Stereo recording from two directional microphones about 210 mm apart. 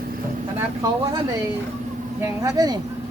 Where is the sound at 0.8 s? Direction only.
20° right (ahead or behind).